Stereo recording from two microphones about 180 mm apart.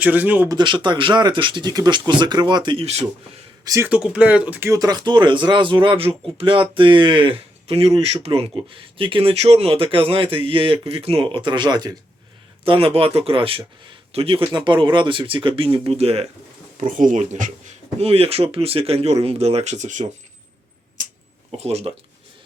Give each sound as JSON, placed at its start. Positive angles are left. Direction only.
{"t": 0.0, "sound": "speech", "side_deg": -10}
{"t": 0.5, "sound": "speech", "side_deg": -25}
{"t": 3.6, "sound": "speech", "side_deg": -20}
{"t": 3.8, "sound": "speech", "side_deg": -5}
{"t": 16.8, "sound": "speech", "side_deg": -45}
{"t": 18.0, "sound": "speech", "side_deg": -35}
{"t": 21.0, "sound": "a sound", "side_deg": -45}
{"t": 21.6, "sound": "speech", "side_deg": -35}